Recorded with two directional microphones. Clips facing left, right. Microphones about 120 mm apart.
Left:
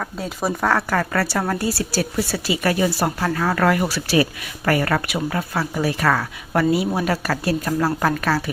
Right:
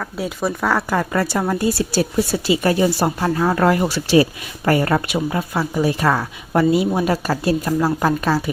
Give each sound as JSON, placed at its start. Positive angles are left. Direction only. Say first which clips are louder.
{"t": 0.2, "sound": "speech", "louder": "right 1 dB", "side_deg": 0}
{"t": 0.9, "sound": "speech", "louder": "right 2 dB", "side_deg": -15}